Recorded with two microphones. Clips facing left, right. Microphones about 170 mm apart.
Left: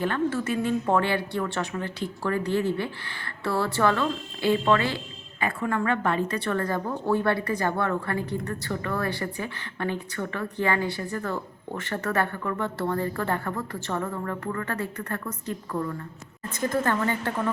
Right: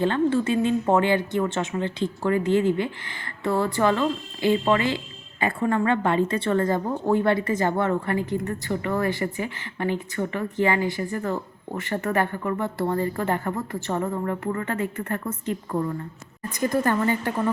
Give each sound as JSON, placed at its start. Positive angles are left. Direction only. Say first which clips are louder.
{"t": 0.0, "sound": "a woman's voice", "louder": "right 5 dB", "side_deg": -25}
{"t": 5.4, "sound": "a woman's voice", "louder": "right 4 dB", "side_deg": -30}
{"t": 16.6, "sound": "speech", "louder": "right 3 dB", "side_deg": -15}